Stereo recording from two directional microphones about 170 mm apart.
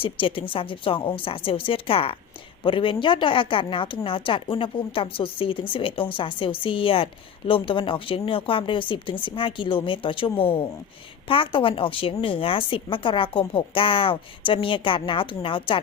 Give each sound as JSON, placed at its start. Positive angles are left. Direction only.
{"t": 0.0, "sound": "speech", "side_deg": 30}